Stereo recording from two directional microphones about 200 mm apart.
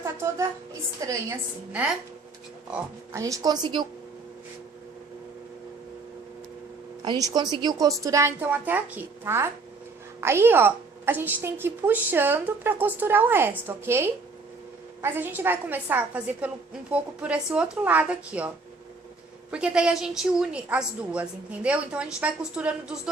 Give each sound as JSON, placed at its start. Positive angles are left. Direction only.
{"t": 0.0, "sound": "music", "side_deg": -15}
{"t": 1.0, "sound": "a woman's voice", "side_deg": -15}
{"t": 7.0, "sound": "a woman's voice", "side_deg": -20}